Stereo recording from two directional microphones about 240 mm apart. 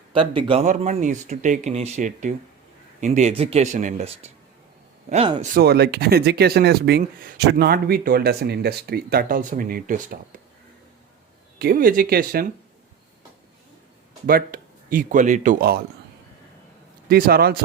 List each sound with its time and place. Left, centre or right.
0.1 s speech: right
5.5 s speech: right
11.6 s speech: right
14.3 s speech: right
17.1 s speech: right